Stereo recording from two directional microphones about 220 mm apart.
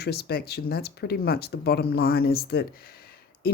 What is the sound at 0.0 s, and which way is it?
Speech, 45° left (ahead or behind).